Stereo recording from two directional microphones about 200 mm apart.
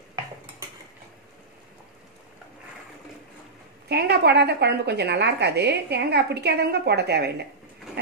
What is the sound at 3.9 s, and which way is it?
A woman's voice, 55° right (ahead or behind).